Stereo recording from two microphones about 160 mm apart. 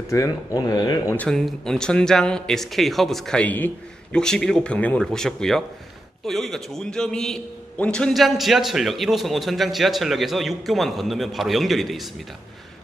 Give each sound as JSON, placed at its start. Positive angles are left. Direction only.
{"t": 0.1, "sound": "speech", "side_deg": 20}
{"t": 1.1, "sound": "a man's voice", "side_deg": 5}